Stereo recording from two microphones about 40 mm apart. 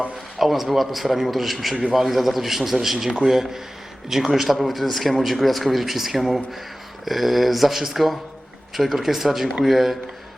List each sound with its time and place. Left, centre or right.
0.3 s a man's voice: centre